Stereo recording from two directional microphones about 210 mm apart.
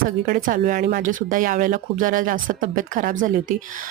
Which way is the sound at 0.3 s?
45° right (ahead or behind).